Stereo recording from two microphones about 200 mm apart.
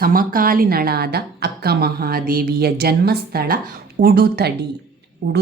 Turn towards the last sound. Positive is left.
turn(degrees=-55)  # may be behind; listen again after turning